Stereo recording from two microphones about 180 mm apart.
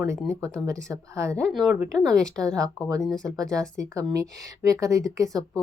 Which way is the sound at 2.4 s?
20° right (ahead or behind).